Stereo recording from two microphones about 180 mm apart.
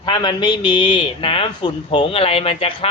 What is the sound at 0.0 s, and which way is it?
Speech, 25° left (ahead or behind).